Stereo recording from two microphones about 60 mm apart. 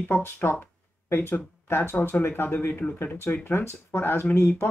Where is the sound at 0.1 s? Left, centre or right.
Left.